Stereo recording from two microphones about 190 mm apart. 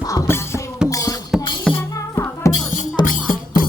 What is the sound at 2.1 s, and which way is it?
Music, 15° left (ahead or behind).